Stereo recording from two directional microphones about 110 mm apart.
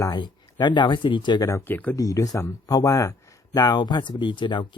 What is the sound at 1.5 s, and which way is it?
Speech, 25° left (ahead or behind).